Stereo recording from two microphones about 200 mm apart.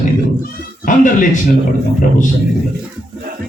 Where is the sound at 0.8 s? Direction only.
40° left (ahead or behind).